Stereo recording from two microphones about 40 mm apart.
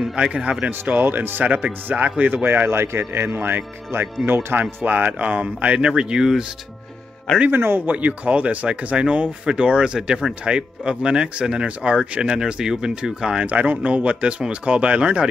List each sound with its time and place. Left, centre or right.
0.1 s speech: right
1.0 s speech: right
1.4 s speech: right
2.8 s a man's voice: right
3.3 s speech: right
4.3 s speech: right
4.8 s speech: right
5.9 s speech: right
7.5 s a man's voice: right
7.8 s speech: right
9.9 s speech: centre; by 12.0 s right
12.0 s speech: centre
13.4 s speech: right